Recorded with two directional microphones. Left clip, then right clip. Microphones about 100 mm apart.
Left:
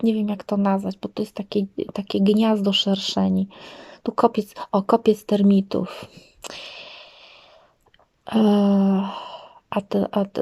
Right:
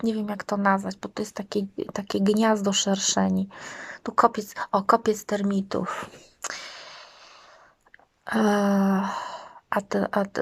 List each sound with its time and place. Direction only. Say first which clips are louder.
0.0 s speech: left 5 dB; 25° left (ahead or behind)
8.3 s speech: left 3 dB; 20° left (ahead or behind)